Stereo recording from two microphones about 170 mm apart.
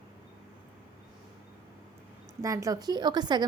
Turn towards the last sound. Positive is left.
turn(degrees=-25)  # may be behind; listen again after turning